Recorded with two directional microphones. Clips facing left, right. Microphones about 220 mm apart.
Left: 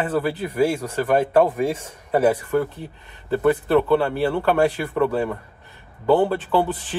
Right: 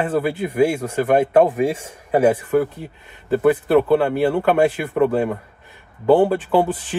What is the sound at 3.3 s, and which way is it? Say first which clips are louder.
Speech: right 3 dB; 10° right (ahead or behind).